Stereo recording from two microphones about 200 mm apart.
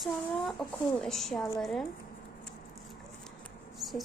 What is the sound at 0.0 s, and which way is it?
Speech, centre (ahead or behind).